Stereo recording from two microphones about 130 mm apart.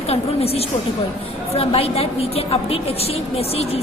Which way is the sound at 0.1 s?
50° left (ahead or behind).